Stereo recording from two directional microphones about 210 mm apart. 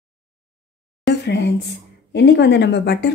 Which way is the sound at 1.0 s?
55° left (ahead or behind).